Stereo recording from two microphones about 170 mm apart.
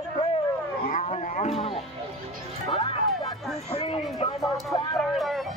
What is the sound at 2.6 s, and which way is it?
Speech, 30° left (ahead or behind).